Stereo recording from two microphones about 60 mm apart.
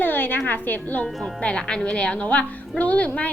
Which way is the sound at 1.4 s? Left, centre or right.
Centre.